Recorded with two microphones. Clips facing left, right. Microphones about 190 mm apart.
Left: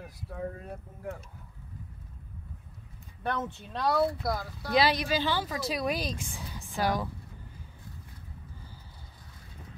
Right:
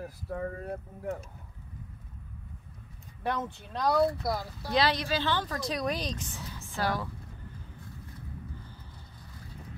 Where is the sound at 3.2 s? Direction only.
Centre (ahead or behind).